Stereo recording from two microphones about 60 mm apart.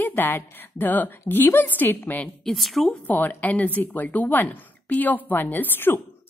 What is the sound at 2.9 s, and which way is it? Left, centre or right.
A woman's voice, left.